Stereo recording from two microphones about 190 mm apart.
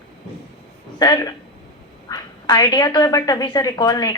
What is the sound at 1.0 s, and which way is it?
A woman's voice, 20° left (ahead or behind).